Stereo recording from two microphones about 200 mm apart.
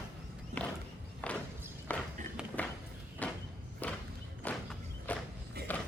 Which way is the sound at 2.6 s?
5° left (ahead or behind).